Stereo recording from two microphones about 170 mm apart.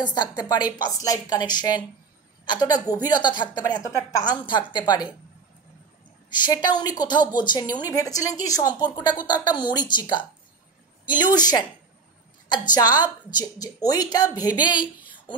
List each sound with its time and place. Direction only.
0.0 s a woman's voice: 25° left (ahead or behind)
6.3 s a woman's voice: 25° left (ahead or behind)
12.6 s a woman's voice: 25° left (ahead or behind)